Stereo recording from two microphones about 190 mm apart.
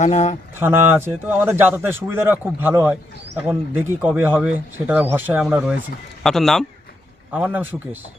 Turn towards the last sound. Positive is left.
turn(degrees=-10)  # may be behind; listen again after turning